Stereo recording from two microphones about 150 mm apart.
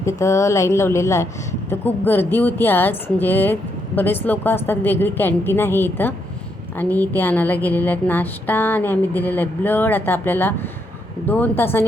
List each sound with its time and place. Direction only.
0.0 s speech: 20° left (ahead or behind)